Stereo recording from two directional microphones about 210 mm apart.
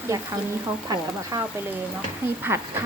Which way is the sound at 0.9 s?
20° right (ahead or behind).